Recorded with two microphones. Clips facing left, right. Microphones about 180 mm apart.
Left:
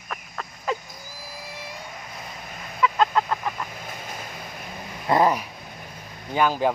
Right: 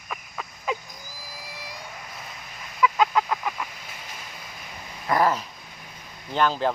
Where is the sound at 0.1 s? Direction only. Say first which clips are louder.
Left 1 dB; 5° right (ahead or behind).